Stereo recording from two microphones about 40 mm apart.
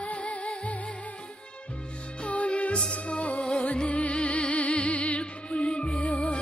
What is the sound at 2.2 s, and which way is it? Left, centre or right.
Music, left.